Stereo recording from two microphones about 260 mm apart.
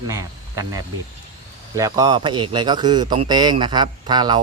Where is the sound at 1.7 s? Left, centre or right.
Centre.